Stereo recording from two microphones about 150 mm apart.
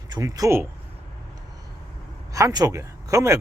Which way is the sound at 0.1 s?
25° right (ahead or behind).